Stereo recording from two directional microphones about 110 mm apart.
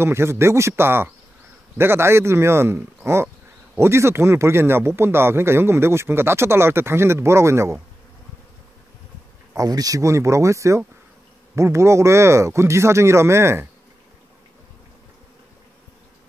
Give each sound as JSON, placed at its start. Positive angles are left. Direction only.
{"t": 0.0, "sound": "a man's voice", "side_deg": -25}
{"t": 9.6, "sound": "a man's voice", "side_deg": -35}